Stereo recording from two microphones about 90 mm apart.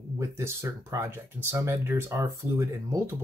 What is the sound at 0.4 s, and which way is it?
Speech, 30° right (ahead or behind).